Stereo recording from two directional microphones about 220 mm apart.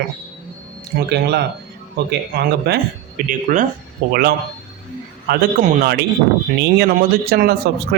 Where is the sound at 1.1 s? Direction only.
50° right (ahead or behind).